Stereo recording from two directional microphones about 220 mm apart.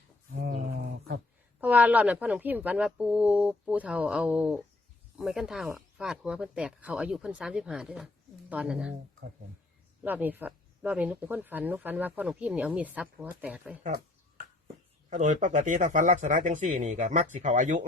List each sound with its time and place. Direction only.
0.5 s a sound: 40° right (ahead or behind)
1.6 s speech: 5° right (ahead or behind)
10.0 s speech: 10° right (ahead or behind)
15.1 s speech: 35° right (ahead or behind)